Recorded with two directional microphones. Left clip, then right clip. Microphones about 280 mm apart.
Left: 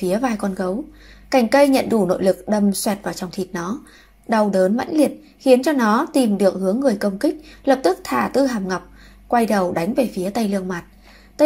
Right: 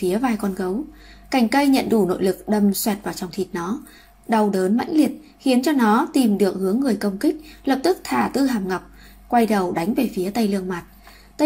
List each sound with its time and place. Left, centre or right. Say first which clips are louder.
0.0 s a woman's voice: left 1 dB; centre
5.9 s a woman's voice: even; centre
6.1 s a woman's voice: left 2 dB; centre